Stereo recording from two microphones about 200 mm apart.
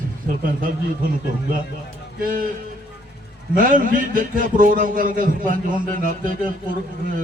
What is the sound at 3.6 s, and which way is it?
A man's voice, 45° right (ahead or behind).